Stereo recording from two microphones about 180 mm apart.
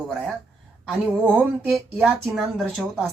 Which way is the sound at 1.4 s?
Centre (ahead or behind).